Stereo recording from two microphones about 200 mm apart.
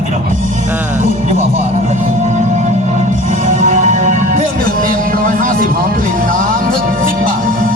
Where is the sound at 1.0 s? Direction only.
35° right (ahead or behind).